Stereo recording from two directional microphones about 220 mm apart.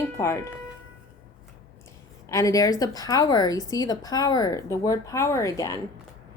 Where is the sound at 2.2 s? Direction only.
15° left (ahead or behind).